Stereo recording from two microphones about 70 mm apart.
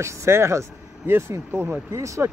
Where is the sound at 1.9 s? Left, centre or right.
Right.